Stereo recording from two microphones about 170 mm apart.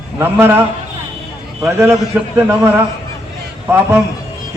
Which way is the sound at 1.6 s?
10° right (ahead or behind).